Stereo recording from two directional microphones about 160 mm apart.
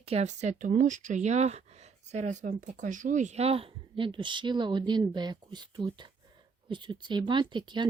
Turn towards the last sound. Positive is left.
turn(degrees=-30)  # may be behind; listen again after turning